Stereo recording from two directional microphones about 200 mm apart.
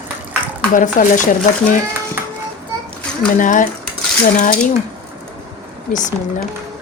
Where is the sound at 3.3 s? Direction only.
40° left (ahead or behind).